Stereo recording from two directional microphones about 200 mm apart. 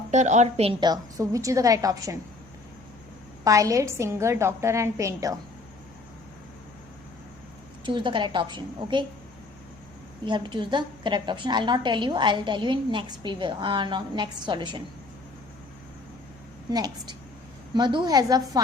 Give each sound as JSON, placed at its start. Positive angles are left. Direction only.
{"t": 0.1, "sound": "a woman's voice", "side_deg": -35}
{"t": 3.4, "sound": "a woman's voice", "side_deg": -15}
{"t": 7.9, "sound": "a woman's voice", "side_deg": -25}
{"t": 10.2, "sound": "a woman's voice", "side_deg": -20}
{"t": 16.6, "sound": "a woman's voice", "side_deg": -20}